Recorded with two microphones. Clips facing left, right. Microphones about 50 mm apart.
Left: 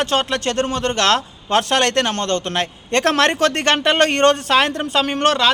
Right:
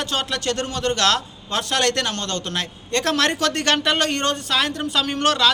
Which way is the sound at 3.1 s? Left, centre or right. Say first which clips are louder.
Left 4 dB; left.